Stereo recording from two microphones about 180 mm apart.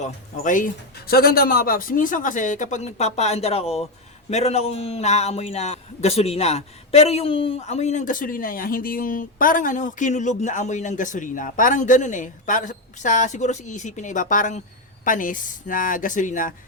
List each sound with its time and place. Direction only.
0.0 s a man's voice: 45° left (ahead or behind)